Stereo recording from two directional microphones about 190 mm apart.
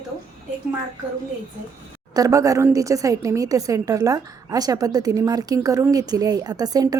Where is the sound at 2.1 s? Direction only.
20° right (ahead or behind).